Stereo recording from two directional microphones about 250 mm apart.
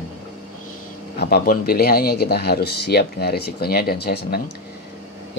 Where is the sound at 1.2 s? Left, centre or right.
Left.